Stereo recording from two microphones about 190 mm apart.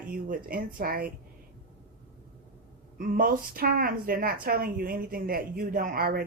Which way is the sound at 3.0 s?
45° right (ahead or behind).